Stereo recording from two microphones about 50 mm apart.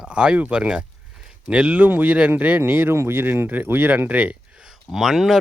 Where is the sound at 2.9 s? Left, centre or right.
Right.